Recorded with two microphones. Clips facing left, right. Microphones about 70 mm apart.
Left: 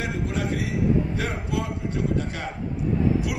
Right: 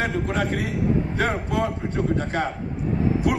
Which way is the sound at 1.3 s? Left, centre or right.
Right.